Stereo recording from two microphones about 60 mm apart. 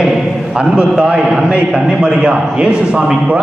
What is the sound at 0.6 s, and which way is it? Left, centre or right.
A man's voice, centre.